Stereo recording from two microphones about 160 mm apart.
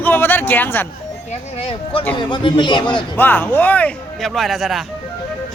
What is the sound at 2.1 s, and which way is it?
Speech, 30° left (ahead or behind).